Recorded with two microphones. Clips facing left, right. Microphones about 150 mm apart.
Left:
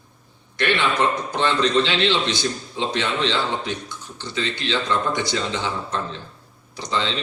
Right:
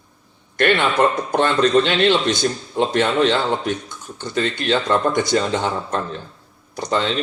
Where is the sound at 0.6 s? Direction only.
50° right (ahead or behind).